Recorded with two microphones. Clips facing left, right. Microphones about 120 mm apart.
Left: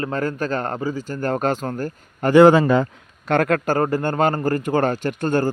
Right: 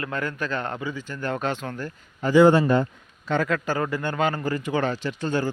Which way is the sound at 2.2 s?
65° left (ahead or behind).